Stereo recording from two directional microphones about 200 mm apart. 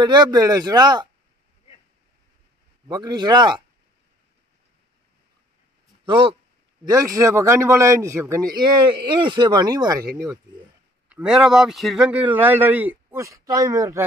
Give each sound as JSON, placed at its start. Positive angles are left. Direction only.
{"t": 0.0, "sound": "speech", "side_deg": -20}
{"t": 2.9, "sound": "speech", "side_deg": -20}
{"t": 6.0, "sound": "a man's voice", "side_deg": -25}
{"t": 11.1, "sound": "a man's voice", "side_deg": -5}